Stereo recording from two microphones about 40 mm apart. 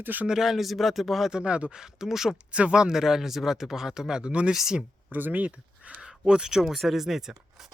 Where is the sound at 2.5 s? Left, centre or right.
Right.